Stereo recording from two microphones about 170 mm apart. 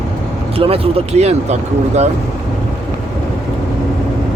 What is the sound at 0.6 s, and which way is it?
Speech, 35° right (ahead or behind).